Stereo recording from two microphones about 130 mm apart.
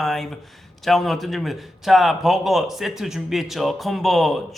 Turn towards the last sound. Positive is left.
turn(degrees=0)  # may be behind; listen again after turning